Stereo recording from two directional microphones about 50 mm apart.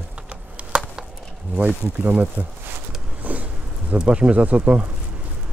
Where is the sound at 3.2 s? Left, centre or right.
Right.